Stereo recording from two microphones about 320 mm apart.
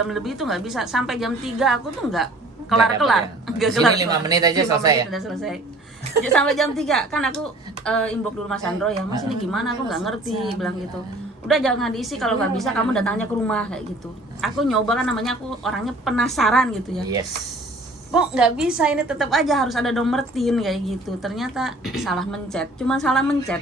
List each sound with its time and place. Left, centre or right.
0.1 s a woman's voice: centre
3.9 s speech: centre
5.1 s a woman's voice: centre
18.1 s a woman's voice: centre